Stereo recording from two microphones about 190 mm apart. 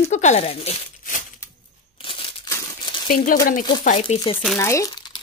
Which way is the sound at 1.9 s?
25° left (ahead or behind).